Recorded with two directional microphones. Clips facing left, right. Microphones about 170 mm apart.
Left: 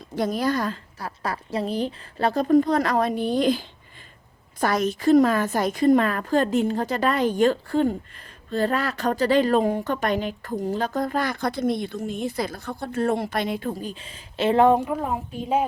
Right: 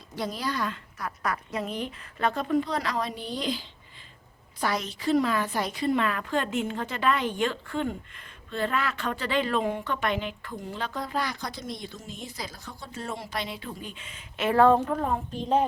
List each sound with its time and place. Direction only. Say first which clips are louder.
0.2 s a woman's voice: left 7 dB; 50° left (ahead or behind)
13.7 s a woman's voice: left 7 dB; 35° left (ahead or behind); by 15.6 s 10° left (ahead or behind)